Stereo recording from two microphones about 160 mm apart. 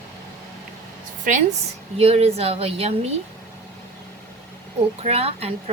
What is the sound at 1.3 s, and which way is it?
Speech, 55° right (ahead or behind).